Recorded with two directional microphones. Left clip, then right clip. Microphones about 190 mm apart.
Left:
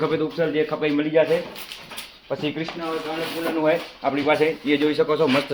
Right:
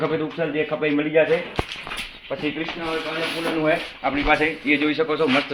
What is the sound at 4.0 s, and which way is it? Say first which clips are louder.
A man's voice: even; 70° left (ahead or behind).